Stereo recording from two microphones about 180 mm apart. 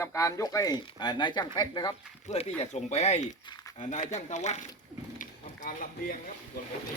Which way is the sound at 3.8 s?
40° left (ahead or behind).